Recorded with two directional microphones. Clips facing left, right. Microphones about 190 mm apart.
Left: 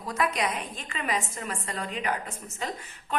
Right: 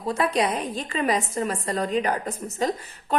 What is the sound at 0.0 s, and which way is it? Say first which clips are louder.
A woman's voice: right 5 dB; 30° right (ahead or behind).